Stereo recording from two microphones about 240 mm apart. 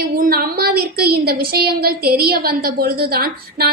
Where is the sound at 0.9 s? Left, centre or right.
Right.